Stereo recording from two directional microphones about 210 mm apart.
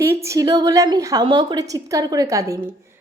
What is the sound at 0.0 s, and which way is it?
A woman's voice, 15° right (ahead or behind).